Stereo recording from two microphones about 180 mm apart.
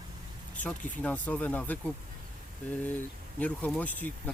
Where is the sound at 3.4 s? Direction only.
10° left (ahead or behind).